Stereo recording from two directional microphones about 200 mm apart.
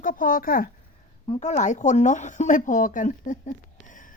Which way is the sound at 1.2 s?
30° left (ahead or behind).